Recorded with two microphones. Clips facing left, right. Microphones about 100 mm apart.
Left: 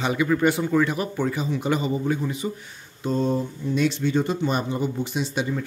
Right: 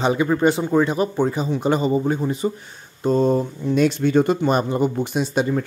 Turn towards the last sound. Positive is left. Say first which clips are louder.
# right 5 dB
turn(degrees=-50)  # may be behind; listen again after turning